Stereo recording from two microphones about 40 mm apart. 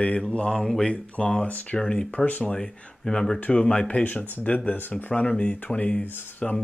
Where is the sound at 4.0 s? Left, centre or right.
Left.